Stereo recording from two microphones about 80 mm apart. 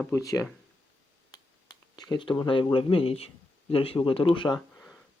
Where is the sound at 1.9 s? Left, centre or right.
Left.